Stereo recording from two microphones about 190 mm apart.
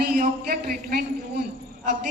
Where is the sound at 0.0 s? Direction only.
50° right (ahead or behind).